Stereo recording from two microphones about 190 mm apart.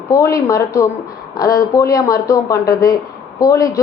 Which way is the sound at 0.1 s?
15° left (ahead or behind).